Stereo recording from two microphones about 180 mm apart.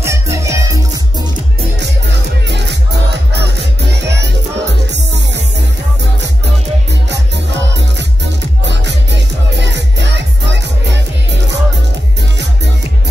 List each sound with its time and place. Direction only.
0.0 s music: 15° right (ahead or behind)
1.8 s music: 70° right (ahead or behind)
8.6 s music: 75° right (ahead or behind)